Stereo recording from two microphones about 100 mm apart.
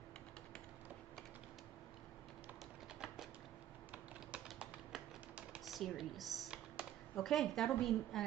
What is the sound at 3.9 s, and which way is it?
Typing, 10° right (ahead or behind).